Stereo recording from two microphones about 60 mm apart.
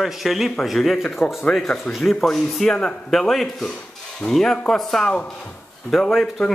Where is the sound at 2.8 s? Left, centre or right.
Centre.